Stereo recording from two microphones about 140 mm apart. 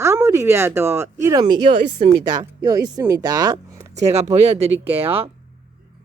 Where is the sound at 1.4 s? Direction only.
35° right (ahead or behind).